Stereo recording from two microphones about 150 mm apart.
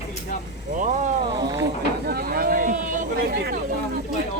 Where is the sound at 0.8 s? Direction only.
55° right (ahead or behind).